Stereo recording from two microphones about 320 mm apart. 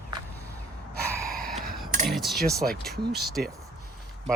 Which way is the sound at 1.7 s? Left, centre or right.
Right.